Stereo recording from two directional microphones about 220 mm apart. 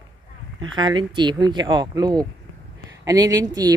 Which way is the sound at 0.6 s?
20° right (ahead or behind).